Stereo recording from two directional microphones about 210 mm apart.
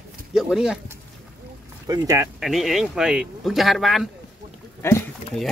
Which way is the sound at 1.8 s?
15° right (ahead or behind).